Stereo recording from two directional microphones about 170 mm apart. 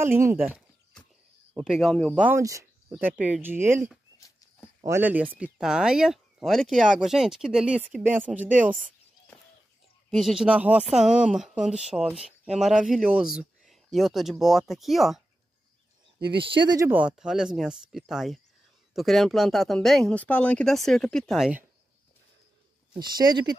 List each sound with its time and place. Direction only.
0.0 s speech: 15° right (ahead or behind)
0.5 s a sound: 5° left (ahead or behind)
1.5 s speech: 5° right (ahead or behind)
2.1 s speech: 10° right (ahead or behind)
10.1 s speech: 5° right (ahead or behind)
16.3 s speech: 30° right (ahead or behind)
16.9 s speech: 5° right (ahead or behind)
22.9 s speech: 25° right (ahead or behind)